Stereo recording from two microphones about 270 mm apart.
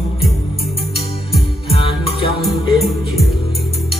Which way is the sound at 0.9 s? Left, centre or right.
Centre.